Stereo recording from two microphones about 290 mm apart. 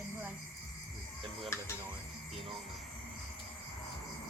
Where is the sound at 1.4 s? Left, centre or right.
Centre.